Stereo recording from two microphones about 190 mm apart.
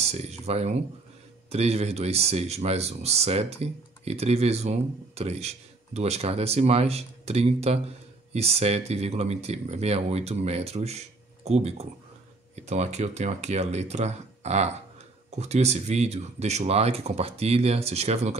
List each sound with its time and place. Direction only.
0.0 s speech: 35° right (ahead or behind)